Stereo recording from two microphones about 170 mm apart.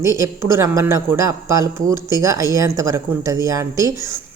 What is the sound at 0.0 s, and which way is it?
A woman's voice, 20° right (ahead or behind).